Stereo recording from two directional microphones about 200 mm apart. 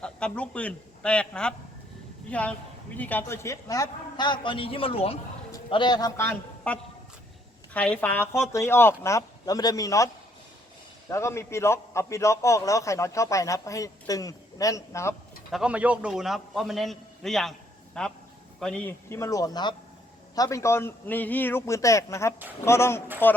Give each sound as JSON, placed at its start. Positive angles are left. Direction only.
{"t": 0.0, "sound": "a man's voice", "side_deg": 5}
{"t": 11.1, "sound": "a man's voice", "side_deg": 15}
{"t": 15.5, "sound": "a man's voice", "side_deg": -5}